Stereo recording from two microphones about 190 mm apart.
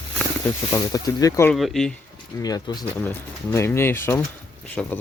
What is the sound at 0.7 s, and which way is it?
Speech, 20° left (ahead or behind).